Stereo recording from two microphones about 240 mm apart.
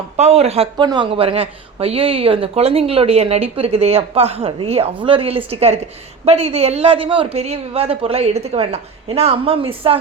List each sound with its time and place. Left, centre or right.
0.2 s speech: right